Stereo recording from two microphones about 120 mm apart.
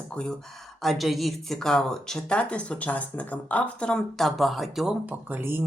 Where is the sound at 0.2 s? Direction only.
10° left (ahead or behind).